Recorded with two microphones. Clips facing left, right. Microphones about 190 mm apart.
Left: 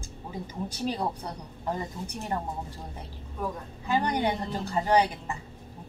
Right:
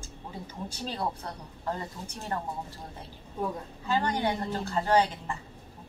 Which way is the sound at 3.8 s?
15° left (ahead or behind).